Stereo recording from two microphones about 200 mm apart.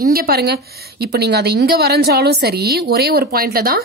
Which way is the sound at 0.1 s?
50° right (ahead or behind).